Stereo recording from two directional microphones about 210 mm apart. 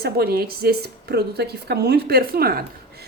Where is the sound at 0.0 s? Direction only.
45° right (ahead or behind).